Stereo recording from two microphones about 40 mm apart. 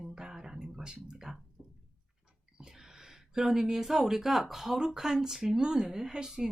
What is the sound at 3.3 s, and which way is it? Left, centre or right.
A woman's voice, centre.